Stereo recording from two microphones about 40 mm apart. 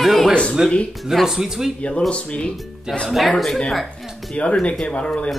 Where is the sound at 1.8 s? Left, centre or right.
Left.